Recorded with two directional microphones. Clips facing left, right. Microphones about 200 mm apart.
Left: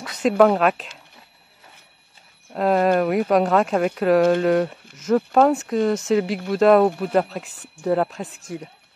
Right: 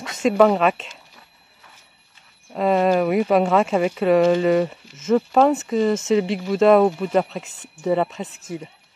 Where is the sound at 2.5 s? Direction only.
Centre (ahead or behind).